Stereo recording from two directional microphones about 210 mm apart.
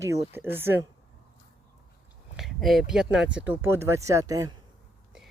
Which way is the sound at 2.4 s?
Centre (ahead or behind).